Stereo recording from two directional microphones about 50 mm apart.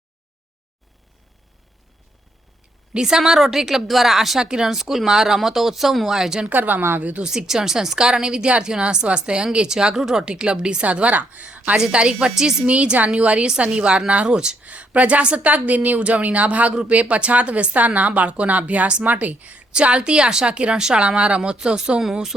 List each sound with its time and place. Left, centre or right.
2.9 s a woman's voice: centre
6.5 s a woman's voice: right
7.0 s speech: right
7.3 s a woman's voice: centre
10.2 s a woman's voice: centre
12.6 s a woman's voice: right; by 22.4 s centre